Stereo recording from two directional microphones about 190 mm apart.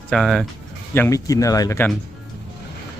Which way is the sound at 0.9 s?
15° left (ahead or behind).